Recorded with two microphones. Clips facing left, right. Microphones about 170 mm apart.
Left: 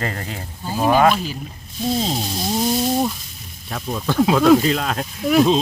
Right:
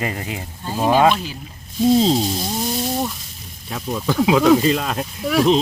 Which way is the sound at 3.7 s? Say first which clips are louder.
Right 1 dB; centre (ahead or behind).